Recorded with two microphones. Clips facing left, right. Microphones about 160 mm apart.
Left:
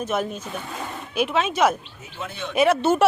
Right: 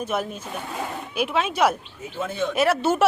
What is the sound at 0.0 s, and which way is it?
Speech, 5° right (ahead or behind).